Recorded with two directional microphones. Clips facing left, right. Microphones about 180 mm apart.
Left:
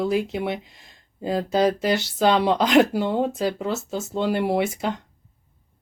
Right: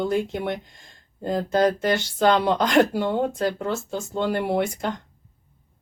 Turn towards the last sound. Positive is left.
turn(degrees=5)  # may be behind; listen again after turning